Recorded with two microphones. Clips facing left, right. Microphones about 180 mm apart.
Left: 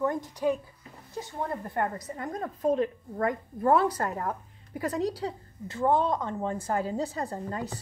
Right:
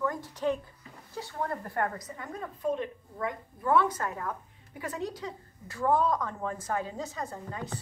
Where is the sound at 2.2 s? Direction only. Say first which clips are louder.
Left 5 dB; 40° left (ahead or behind).